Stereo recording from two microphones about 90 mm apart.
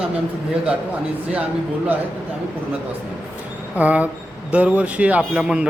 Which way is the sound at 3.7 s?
15° right (ahead or behind).